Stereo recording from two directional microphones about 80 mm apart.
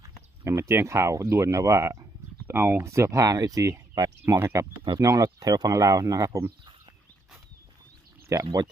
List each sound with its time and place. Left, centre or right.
0.4 s speech: right
4.9 s speech: right
8.3 s speech: right